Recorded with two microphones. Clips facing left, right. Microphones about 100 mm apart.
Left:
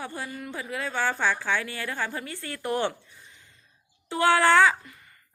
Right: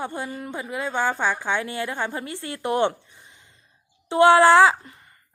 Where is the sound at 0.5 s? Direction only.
20° right (ahead or behind).